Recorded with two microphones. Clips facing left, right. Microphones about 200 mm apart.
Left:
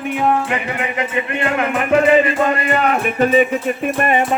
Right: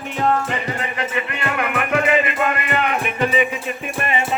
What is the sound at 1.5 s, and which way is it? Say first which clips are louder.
Music: left 5 dB; 30° left (ahead or behind).